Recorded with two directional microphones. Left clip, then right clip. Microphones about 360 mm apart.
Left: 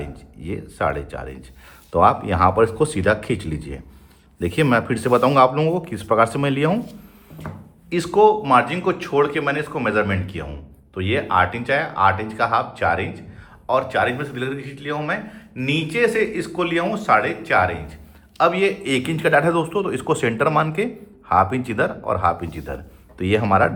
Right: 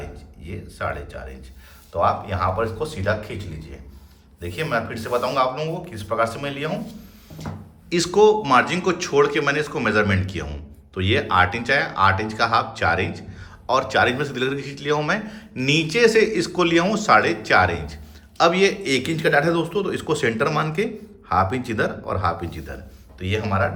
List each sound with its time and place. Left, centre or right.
0.4 s speech: centre
7.4 s a man's voice: centre